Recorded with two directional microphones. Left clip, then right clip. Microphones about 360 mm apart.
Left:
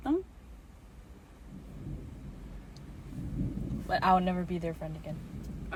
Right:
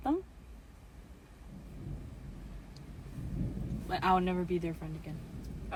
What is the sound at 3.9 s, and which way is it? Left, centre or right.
Speech, centre.